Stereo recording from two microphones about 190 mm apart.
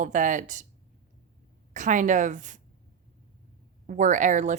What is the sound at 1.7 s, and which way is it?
Speech, 40° right (ahead or behind).